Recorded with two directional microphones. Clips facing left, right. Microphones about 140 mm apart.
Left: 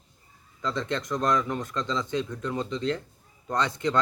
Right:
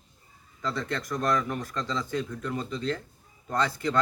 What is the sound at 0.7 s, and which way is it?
Speech, 20° left (ahead or behind).